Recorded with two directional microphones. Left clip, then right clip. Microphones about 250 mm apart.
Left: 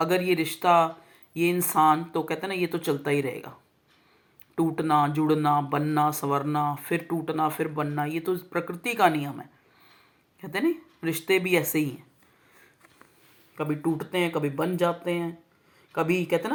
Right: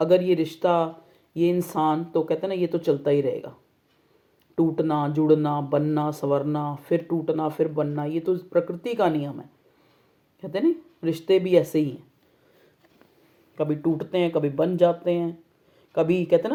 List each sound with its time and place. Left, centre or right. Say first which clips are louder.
0.0 s speech: right 4 dB; left
4.5 s speech: even; left
11.0 s speech: right 3 dB; left
13.6 s speech: right 4 dB; left